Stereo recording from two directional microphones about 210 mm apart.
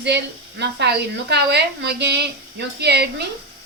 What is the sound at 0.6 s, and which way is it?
Speech, 55° right (ahead or behind).